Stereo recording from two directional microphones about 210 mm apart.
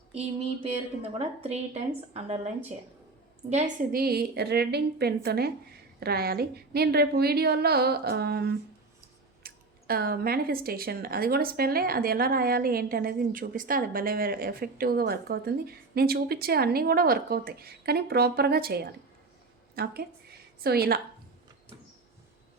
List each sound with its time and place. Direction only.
1.2 s speech: 30° right (ahead or behind)
3.5 s speech: 40° right (ahead or behind)